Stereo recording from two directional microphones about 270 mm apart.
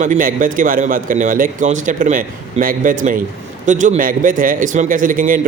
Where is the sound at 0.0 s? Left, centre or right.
Right.